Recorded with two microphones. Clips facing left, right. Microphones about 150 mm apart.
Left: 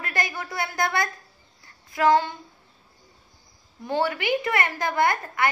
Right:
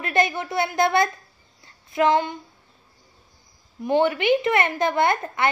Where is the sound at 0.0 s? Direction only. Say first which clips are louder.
Right 7 dB; 20° right (ahead or behind).